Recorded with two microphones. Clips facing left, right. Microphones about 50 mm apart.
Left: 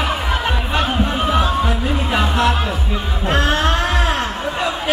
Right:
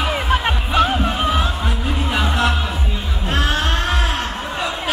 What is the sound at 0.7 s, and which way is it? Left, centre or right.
Music, centre.